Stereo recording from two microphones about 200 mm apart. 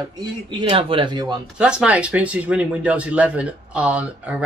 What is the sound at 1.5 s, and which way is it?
Speech, 5° right (ahead or behind).